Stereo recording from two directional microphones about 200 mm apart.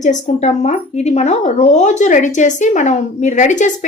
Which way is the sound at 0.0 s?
35° left (ahead or behind).